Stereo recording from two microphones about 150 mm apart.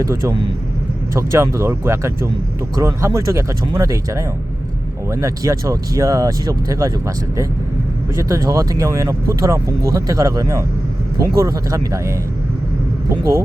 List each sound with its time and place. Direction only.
0.0 s speech: 20° right (ahead or behind)
8.1 s speech: 20° right (ahead or behind)